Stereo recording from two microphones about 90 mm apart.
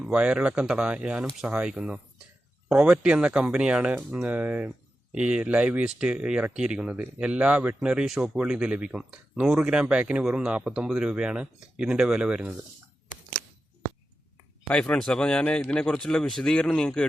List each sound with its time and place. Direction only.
0.0 s speech: 10° right (ahead or behind)
14.7 s speech: 10° left (ahead or behind)